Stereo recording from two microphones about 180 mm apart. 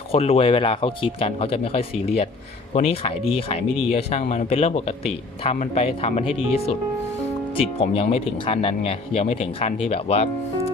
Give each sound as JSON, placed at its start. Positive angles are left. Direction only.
{"t": 0.1, "sound": "a man's voice", "side_deg": 35}